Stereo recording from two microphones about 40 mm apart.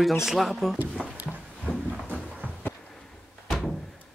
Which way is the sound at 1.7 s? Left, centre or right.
Centre.